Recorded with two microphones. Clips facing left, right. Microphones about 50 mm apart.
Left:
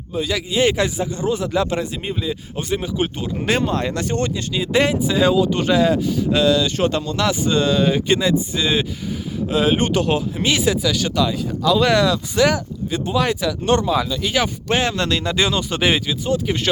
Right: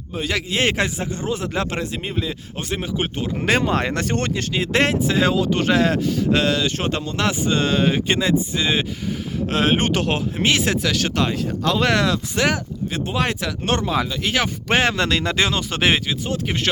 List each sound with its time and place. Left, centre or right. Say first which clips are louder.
0.1 s speech: left 2 dB; right
3.4 s speech: right 1 dB; right
3.8 s speech: left 1 dB; right
9.5 s speech: left 2 dB; right
10.3 s speech: left 1 dB; right